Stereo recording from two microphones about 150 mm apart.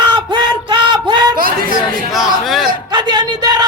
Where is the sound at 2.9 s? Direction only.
30° right (ahead or behind).